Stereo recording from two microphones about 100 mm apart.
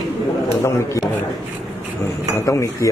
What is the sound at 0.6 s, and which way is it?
Speech, 30° left (ahead or behind).